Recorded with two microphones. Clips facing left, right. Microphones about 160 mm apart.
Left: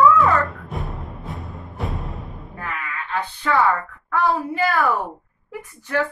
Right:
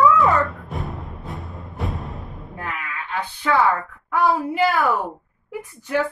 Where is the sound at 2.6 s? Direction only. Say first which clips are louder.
Even; 15° right (ahead or behind).